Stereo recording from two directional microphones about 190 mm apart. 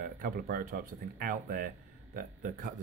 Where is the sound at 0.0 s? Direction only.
50° right (ahead or behind).